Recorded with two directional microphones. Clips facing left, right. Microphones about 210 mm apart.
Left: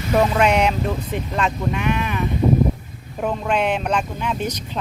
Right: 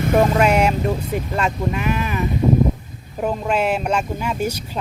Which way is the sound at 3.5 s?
5° right (ahead or behind).